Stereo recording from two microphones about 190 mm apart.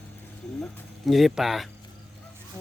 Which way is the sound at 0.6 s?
Centre (ahead or behind).